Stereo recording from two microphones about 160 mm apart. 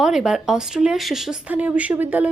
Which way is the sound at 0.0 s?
Centre (ahead or behind).